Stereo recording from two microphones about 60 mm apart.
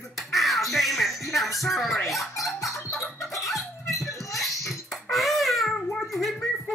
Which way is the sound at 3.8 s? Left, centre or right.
Left.